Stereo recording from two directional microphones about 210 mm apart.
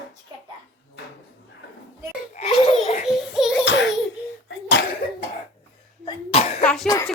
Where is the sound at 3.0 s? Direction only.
Centre (ahead or behind).